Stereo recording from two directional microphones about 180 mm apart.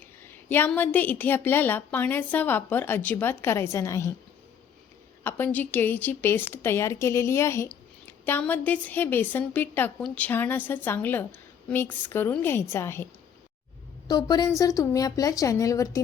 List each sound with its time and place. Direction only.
0.4 s a woman's voice: 10° left (ahead or behind)
5.2 s a woman's voice: 10° left (ahead or behind)
14.1 s a woman's voice: 25° left (ahead or behind)